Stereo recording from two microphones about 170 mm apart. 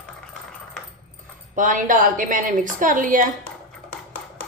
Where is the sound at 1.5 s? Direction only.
50° right (ahead or behind).